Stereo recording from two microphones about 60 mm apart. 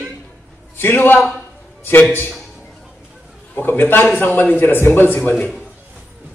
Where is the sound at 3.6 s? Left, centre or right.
Left.